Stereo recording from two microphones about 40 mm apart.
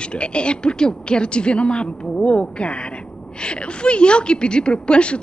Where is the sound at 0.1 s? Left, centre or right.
Left.